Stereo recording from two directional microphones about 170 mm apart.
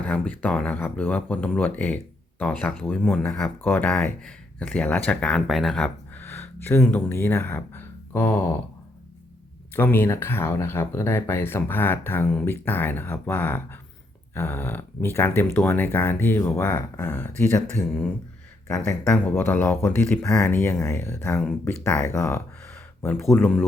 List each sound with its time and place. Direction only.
0.0 s speech: 10° left (ahead or behind)
9.7 s speech: 15° left (ahead or behind)
19.1 s speech: 10° left (ahead or behind)